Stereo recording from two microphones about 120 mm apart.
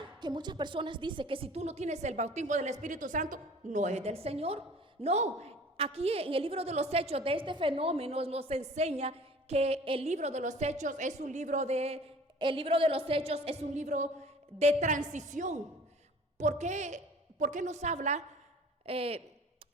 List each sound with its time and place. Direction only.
0.2 s a woman's voice: 35° right (ahead or behind); by 2.7 s 75° right (ahead or behind)
2.8 s a woman's voice: 90° right; by 10.1 s 55° right (ahead or behind)
10.1 s a woman's voice: 70° right (ahead or behind)
12.4 s a woman's voice: 45° right (ahead or behind); by 15.5 s 90° right
16.4 s a woman's voice: 75° right (ahead or behind)
17.4 s a woman's voice: 90° right
18.9 s a woman's voice: 55° right (ahead or behind)